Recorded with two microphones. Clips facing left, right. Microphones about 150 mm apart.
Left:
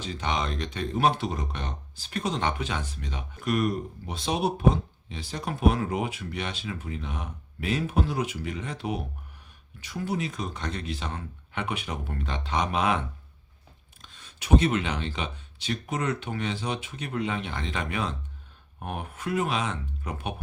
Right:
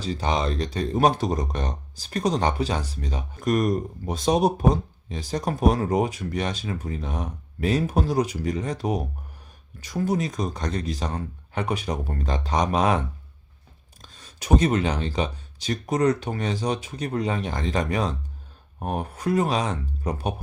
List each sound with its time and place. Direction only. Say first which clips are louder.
0.0 s speech: right 5 dB; 35° right (ahead or behind)
14.0 s speech: right 4 dB; 40° right (ahead or behind)